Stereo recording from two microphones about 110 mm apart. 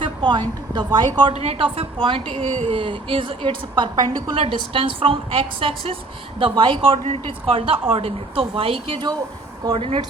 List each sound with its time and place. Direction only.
0.0 s a sound: 45° right (ahead or behind)
0.9 s a woman's voice: 45° right (ahead or behind)
1.3 s a woman's voice: 70° right (ahead or behind)
2.7 s a woman's voice: 50° right (ahead or behind)